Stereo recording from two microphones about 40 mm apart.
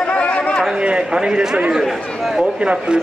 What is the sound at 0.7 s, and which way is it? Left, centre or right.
Speech, right.